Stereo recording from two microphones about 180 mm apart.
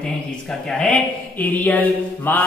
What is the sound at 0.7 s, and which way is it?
Mantra, 5° left (ahead or behind).